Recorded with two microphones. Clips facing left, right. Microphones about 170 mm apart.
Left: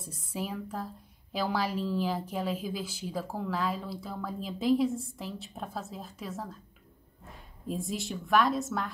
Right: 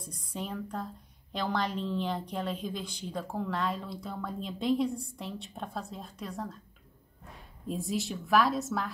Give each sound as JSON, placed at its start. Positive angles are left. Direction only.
{"t": 0.0, "sound": "a woman's voice", "side_deg": 5}
{"t": 7.6, "sound": "a woman's voice", "side_deg": 0}